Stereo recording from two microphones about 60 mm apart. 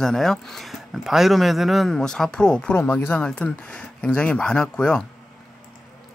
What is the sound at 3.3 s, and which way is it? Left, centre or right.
Speech, centre.